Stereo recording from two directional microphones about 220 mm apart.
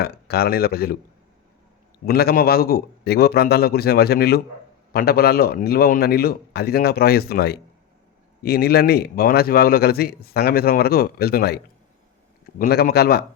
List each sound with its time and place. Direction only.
0.0 s a man's voice: 45° left (ahead or behind)
2.0 s a man's voice: 45° left (ahead or behind)